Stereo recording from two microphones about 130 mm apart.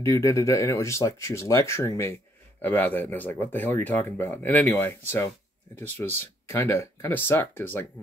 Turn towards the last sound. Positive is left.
turn(degrees=15)  # may be behind; listen again after turning